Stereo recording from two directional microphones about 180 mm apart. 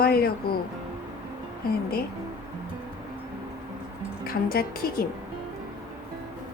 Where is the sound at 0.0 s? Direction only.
55° left (ahead or behind).